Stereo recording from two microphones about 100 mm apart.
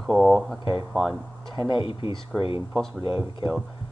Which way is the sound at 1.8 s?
55° left (ahead or behind).